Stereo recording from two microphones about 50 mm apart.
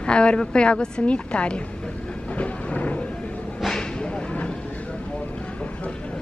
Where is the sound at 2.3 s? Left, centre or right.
Left.